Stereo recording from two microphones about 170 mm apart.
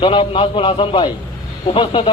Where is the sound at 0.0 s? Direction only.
30° left (ahead or behind).